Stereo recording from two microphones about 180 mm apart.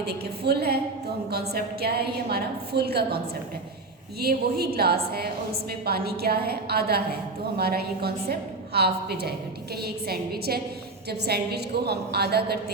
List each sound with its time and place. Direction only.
0.0 s a woman's voice: 65° right (ahead or behind)
4.2 s a woman's voice: 60° right (ahead or behind)